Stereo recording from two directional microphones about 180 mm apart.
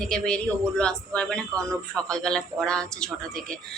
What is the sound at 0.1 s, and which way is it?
A woman's voice, 5° left (ahead or behind).